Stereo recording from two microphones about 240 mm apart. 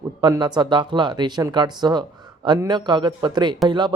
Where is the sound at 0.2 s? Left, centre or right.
Centre.